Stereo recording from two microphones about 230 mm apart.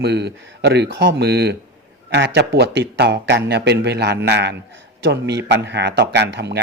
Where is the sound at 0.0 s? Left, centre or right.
Right.